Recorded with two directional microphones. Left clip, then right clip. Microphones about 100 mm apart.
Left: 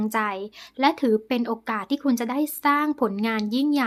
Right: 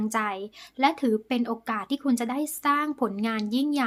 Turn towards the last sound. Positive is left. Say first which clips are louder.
# left 3 dB
turn(degrees=25)  # may be behind; listen again after turning